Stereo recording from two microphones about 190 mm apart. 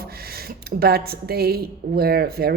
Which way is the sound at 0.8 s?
55° right (ahead or behind).